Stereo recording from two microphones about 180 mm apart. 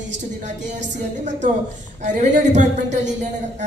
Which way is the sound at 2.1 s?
40° right (ahead or behind).